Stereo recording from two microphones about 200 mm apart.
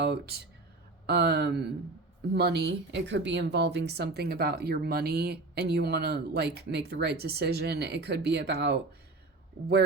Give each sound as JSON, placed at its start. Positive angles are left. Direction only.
{"t": 0.0, "sound": "speech", "side_deg": -55}